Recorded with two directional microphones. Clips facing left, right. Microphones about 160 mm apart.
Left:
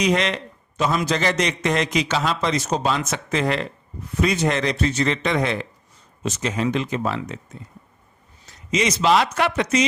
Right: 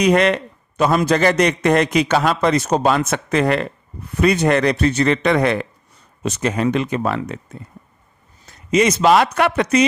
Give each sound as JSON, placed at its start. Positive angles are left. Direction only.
{"t": 0.0, "sound": "a man's voice", "side_deg": -55}